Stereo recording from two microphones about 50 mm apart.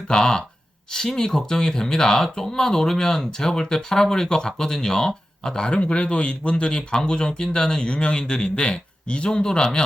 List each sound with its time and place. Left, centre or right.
0.1 s speech: centre